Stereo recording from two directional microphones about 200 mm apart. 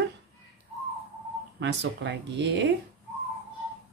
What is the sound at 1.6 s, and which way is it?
Speech, 60° right (ahead or behind).